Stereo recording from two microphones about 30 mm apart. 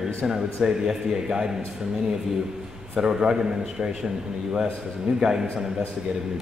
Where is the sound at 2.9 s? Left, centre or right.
Right.